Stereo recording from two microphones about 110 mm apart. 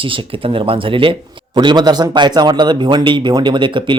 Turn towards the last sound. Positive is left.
turn(degrees=-45)  # may be behind; listen again after turning